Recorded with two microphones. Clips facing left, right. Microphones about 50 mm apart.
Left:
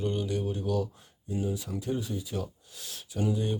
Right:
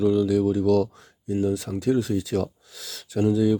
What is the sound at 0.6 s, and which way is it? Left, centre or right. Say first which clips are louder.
Speech: right 10 dB; right.